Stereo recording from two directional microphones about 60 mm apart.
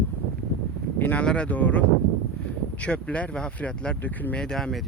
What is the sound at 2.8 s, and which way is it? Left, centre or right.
Speech, left.